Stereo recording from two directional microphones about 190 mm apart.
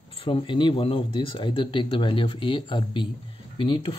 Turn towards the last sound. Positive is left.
turn(degrees=25)  # may be behind; listen again after turning